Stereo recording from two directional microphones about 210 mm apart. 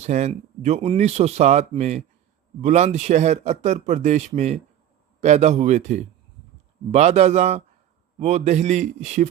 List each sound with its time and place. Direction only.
0.0 s speech: 35° right (ahead or behind)